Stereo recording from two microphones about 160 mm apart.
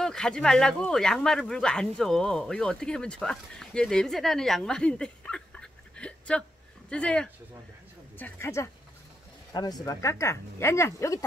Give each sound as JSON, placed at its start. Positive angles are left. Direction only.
{"t": 0.0, "sound": "speech", "side_deg": 5}